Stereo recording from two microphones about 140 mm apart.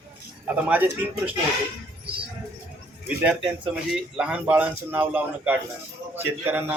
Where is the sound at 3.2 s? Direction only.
10° right (ahead or behind).